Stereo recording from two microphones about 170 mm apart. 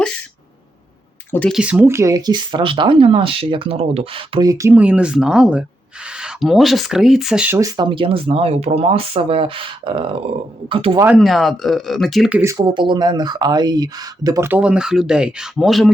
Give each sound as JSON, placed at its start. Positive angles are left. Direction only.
{"t": 1.3, "sound": "speech", "side_deg": 10}
{"t": 1.5, "sound": "speech", "side_deg": -10}
{"t": 4.4, "sound": "speech", "side_deg": -20}
{"t": 7.6, "sound": "speech", "side_deg": -25}
{"t": 11.0, "sound": "speech", "side_deg": 0}
{"t": 12.4, "sound": "speech", "side_deg": -20}